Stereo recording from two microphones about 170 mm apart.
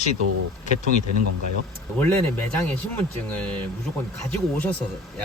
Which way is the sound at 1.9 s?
15° left (ahead or behind).